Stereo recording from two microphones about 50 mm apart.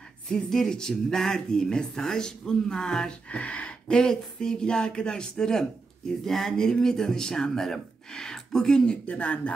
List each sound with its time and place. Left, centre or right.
0.3 s speech: centre
3.3 s speech: left
3.8 s speech: centre
9.0 s speech: left